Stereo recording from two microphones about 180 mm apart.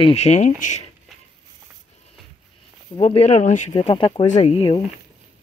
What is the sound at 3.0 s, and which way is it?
Speech, 35° left (ahead or behind).